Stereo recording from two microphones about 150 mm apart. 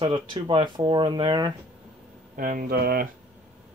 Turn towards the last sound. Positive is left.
turn(degrees=-90)